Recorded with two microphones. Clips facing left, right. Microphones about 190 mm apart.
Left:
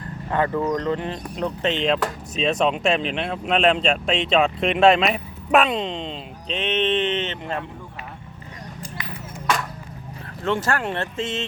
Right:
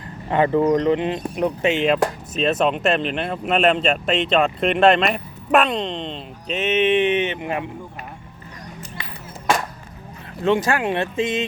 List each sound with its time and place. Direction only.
0.3 s speech: 20° right (ahead or behind)
10.4 s speech: 15° right (ahead or behind)